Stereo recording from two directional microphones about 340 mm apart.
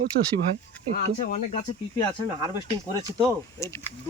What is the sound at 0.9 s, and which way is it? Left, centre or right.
Speech, left.